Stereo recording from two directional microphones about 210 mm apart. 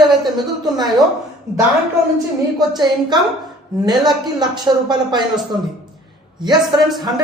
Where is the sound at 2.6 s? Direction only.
20° right (ahead or behind).